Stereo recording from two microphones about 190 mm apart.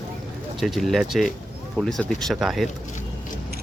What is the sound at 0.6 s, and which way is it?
Speech, centre (ahead or behind).